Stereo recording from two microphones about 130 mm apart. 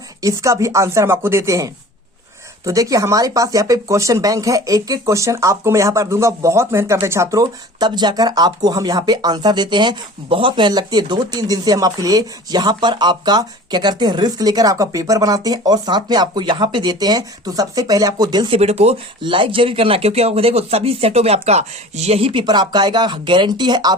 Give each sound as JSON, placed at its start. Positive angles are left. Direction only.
{"t": 0.2, "sound": "speech", "side_deg": -25}
{"t": 18.5, "sound": "speech", "side_deg": -55}
{"t": 19.2, "sound": "speech", "side_deg": -40}